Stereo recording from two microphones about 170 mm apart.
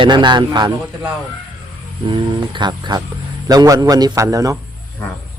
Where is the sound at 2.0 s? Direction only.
30° right (ahead or behind).